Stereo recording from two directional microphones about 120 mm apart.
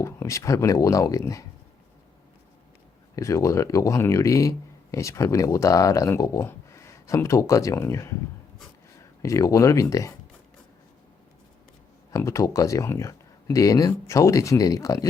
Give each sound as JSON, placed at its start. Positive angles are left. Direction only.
{"t": 0.0, "sound": "speech", "side_deg": 25}
{"t": 3.2, "sound": "speech", "side_deg": 25}
{"t": 9.2, "sound": "speech", "side_deg": 25}
{"t": 12.1, "sound": "speech", "side_deg": 25}